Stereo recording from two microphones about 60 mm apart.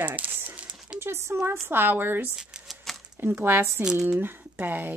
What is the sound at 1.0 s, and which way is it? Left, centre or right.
A woman's voice, right.